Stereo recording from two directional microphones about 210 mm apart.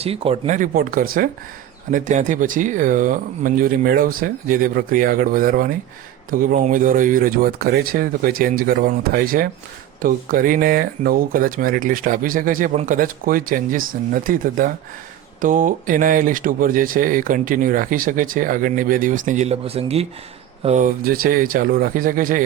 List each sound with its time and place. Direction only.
0.0 s speech: 25° right (ahead or behind)